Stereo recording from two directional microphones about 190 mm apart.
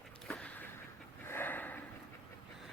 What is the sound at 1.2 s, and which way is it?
Snort, 10° left (ahead or behind).